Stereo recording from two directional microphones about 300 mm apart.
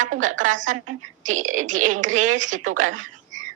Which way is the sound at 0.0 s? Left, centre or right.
Right.